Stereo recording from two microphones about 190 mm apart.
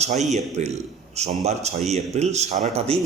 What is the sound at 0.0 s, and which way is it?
A man's voice, 35° right (ahead or behind).